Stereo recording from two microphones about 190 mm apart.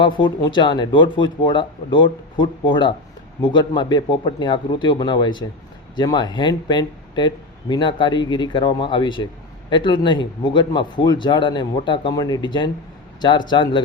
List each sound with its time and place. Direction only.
0.0 s speech: 25° left (ahead or behind)